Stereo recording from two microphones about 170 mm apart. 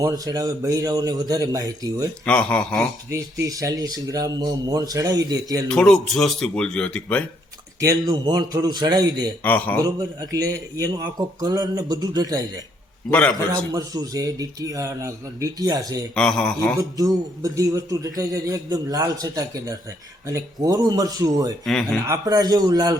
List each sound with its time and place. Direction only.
0.0 s speech: 20° right (ahead or behind)
2.2 s speech: 5° left (ahead or behind)
3.4 s speech: 20° right (ahead or behind)
5.6 s speech: 5° left (ahead or behind)
7.8 s speech: 20° right (ahead or behind)
9.4 s speech: 10° left (ahead or behind)
9.8 s speech: 20° right (ahead or behind)
13.1 s speech: 10° left (ahead or behind)
13.7 s speech: 20° right (ahead or behind)
16.1 s speech: 5° left (ahead or behind)
16.7 s speech: 20° right (ahead or behind)
21.6 s speech: 5° left (ahead or behind)
22.0 s speech: 20° right (ahead or behind)